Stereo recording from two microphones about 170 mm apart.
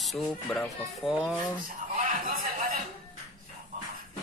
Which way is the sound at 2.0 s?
55° right (ahead or behind).